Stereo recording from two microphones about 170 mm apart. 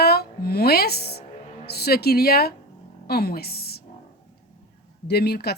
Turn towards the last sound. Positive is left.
turn(degrees=70)  # may be behind; listen again after turning